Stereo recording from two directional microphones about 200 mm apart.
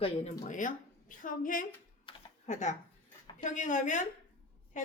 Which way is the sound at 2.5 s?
35° left (ahead or behind).